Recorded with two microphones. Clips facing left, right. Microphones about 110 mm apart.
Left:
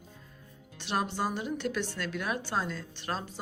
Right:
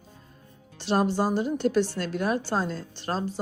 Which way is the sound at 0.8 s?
35° right (ahead or behind).